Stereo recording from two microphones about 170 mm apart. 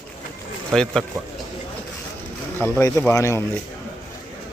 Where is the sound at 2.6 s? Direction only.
10° left (ahead or behind).